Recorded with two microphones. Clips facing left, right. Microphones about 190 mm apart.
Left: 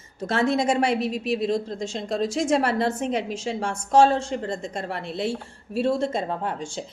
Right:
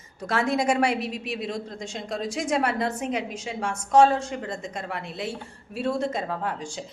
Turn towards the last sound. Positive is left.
turn(degrees=25)  # may be behind; listen again after turning